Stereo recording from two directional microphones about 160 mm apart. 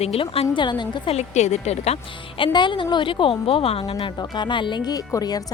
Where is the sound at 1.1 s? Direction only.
45° left (ahead or behind).